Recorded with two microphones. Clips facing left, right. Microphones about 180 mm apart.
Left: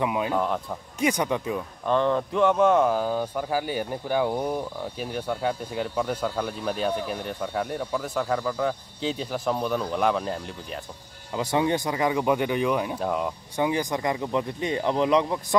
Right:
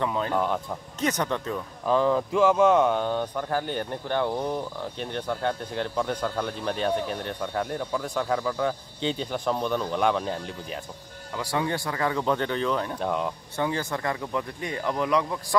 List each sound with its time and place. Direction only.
0.0 s speech: 10° left (ahead or behind)
1.9 s speech: centre (ahead or behind)
11.3 s speech: 20° left (ahead or behind); by 13.3 s 5° left (ahead or behind)
13.6 s speech: 15° left (ahead or behind)